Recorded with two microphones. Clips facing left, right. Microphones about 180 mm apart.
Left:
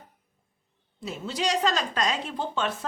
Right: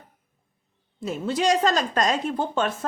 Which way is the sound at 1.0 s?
50° right (ahead or behind).